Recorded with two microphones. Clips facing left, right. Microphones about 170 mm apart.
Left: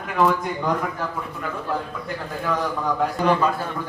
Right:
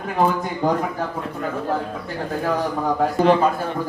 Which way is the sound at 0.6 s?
40° right (ahead or behind).